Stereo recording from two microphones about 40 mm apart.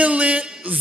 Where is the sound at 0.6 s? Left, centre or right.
Right.